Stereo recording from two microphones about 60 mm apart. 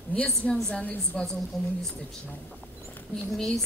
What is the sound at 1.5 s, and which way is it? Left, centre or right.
Speech, centre.